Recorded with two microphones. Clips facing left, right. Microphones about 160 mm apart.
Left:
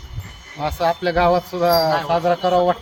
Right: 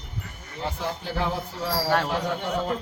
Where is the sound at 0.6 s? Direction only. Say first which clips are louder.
Left 11 dB; 80° left.